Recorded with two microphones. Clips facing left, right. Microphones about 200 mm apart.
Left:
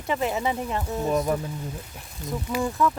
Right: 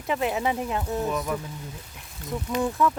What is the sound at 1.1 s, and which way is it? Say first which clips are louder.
Speech: left 5 dB; 40° left (ahead or behind).